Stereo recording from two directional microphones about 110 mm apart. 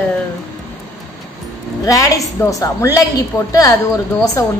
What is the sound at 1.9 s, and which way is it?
A woman's voice, 30° left (ahead or behind).